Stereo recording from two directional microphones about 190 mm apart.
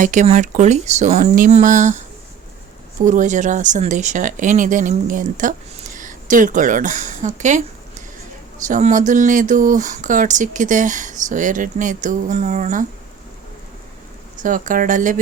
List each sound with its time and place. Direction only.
0.0 s speech: 40° right (ahead or behind)
8.6 s speech: 40° right (ahead or behind)
14.4 s speech: 45° right (ahead or behind)